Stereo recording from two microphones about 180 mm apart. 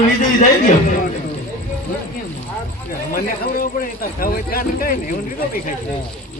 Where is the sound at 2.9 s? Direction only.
55° left (ahead or behind).